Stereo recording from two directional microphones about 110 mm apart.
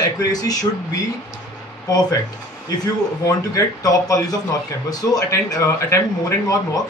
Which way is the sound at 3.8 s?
35° left (ahead or behind).